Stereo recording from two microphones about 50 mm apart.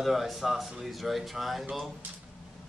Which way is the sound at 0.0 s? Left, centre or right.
Centre.